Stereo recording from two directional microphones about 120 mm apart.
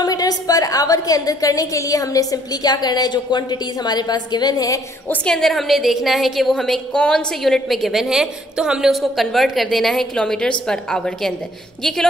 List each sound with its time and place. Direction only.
0.0 s a woman's voice: 30° left (ahead or behind)
5.0 s a woman's voice: 10° left (ahead or behind)